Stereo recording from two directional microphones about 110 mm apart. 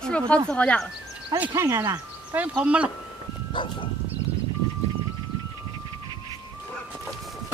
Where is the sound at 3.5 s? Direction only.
50° left (ahead or behind).